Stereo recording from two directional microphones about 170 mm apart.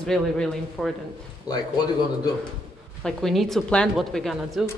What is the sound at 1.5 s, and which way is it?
Speech, 25° left (ahead or behind).